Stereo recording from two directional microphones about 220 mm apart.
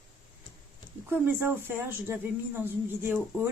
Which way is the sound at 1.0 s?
10° right (ahead or behind).